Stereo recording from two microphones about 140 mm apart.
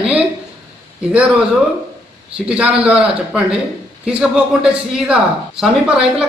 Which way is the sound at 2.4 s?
10° right (ahead or behind).